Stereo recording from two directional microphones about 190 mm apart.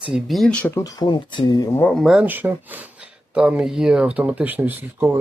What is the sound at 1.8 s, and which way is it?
Speech, 5° left (ahead or behind).